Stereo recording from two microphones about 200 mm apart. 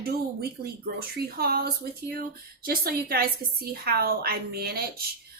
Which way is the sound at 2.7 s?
50° right (ahead or behind).